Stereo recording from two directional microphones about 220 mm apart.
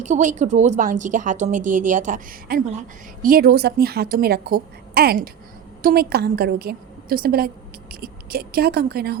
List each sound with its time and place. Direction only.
0.0 s a woman's voice: 35° right (ahead or behind)